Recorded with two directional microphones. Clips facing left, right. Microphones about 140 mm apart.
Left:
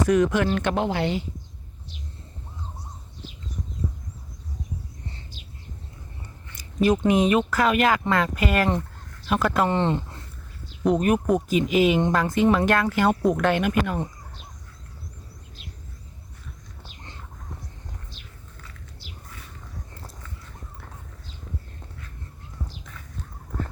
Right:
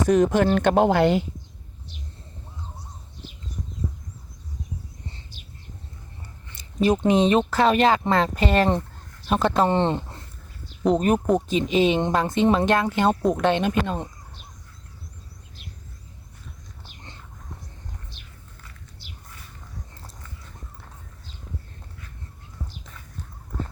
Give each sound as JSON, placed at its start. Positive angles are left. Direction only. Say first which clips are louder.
{"t": 0.1, "sound": "speech", "louder": "right 4 dB", "side_deg": -35}
{"t": 6.5, "sound": "speech", "louder": "even", "side_deg": -25}